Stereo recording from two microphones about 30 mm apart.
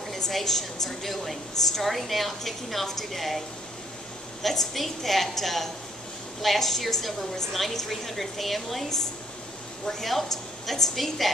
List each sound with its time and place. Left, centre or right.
0.1 s a woman's voice: centre
9.8 s a woman's voice: centre